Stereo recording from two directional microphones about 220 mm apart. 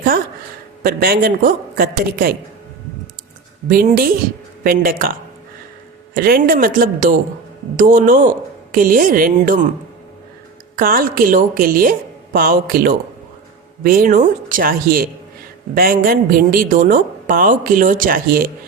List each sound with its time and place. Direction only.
0.8 s a woman's voice: 40° right (ahead or behind)
3.7 s a woman's voice: 40° right (ahead or behind)
6.1 s a woman's voice: 45° right (ahead or behind)
10.8 s a woman's voice: 40° right (ahead or behind)